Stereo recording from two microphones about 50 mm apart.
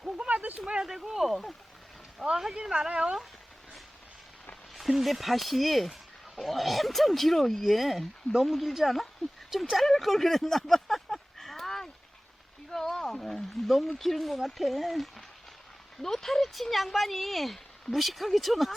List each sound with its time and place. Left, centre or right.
0.0 s a sound: right
0.9 s speech: centre
2.1 s speech: centre
4.7 s speech: centre
9.9 s cattle: centre
12.7 s speech: centre